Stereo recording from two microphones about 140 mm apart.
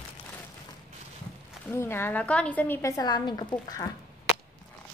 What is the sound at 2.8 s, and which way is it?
A woman's voice, 25° left (ahead or behind).